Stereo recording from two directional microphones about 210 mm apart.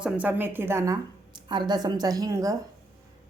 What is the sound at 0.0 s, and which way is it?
A woman's voice, 5° right (ahead or behind).